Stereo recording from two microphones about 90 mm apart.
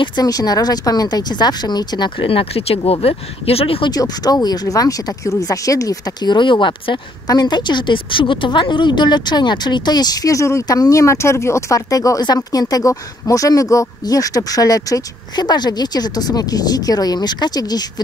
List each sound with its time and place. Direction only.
0.0 s speech: 50° left (ahead or behind); by 3.9 s 90° left
3.9 s speech: 45° left (ahead or behind); by 7.0 s 65° left (ahead or behind)
7.2 s speech: 50° left (ahead or behind)